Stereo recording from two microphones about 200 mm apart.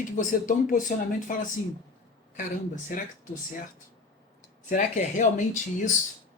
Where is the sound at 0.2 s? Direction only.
40° left (ahead or behind).